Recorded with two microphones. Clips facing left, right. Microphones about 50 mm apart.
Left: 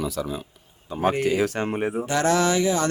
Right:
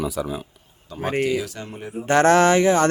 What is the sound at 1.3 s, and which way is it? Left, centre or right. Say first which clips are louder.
Speech: left 3 dB; left.